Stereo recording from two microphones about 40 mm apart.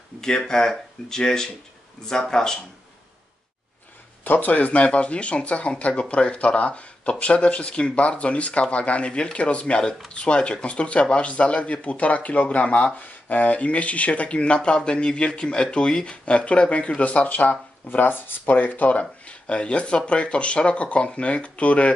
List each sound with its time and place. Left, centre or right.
0.2 s speech: centre
4.2 s a sound: left
4.5 s speech: left
17.8 s speech: left
18.9 s speech: left